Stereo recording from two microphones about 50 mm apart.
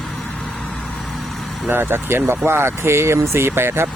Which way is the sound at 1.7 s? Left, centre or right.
Right.